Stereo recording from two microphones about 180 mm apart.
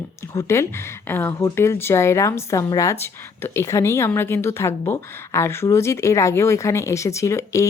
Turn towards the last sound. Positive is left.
turn(degrees=15)  # may be behind; listen again after turning